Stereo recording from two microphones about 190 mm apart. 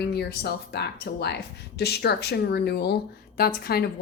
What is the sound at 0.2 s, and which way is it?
Speech, 60° left (ahead or behind).